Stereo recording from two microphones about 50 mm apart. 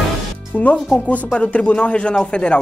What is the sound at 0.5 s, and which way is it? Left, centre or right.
Speech, left.